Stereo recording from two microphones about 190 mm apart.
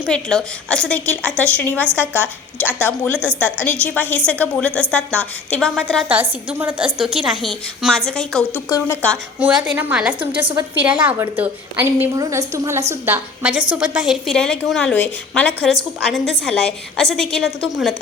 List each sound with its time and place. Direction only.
0.1 s a woman's voice: 5° left (ahead or behind)
1.9 s a woman's voice: 10° right (ahead or behind)
2.7 s a woman's voice: 10° left (ahead or behind)
3.2 s a woman's voice: 10° right (ahead or behind)
3.6 s a woman's voice: 10° left (ahead or behind)
6.1 s a woman's voice: 10° right (ahead or behind)